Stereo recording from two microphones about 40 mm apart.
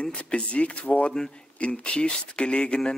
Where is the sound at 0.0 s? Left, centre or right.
Left.